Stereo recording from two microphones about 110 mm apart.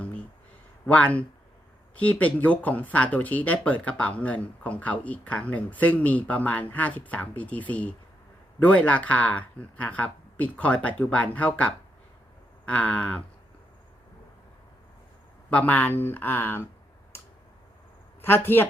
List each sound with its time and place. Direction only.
0.9 s speech: 10° left (ahead or behind)
15.4 s speech: 15° left (ahead or behind)
18.2 s speech: 20° left (ahead or behind)